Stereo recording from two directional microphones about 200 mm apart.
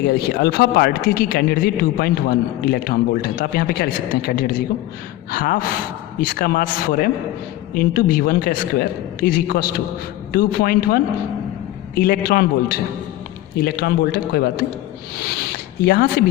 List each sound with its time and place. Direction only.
0.3 s speech: 50° left (ahead or behind)
15.8 s speech: 50° left (ahead or behind)